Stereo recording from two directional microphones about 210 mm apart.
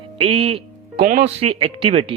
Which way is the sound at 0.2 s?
30° right (ahead or behind).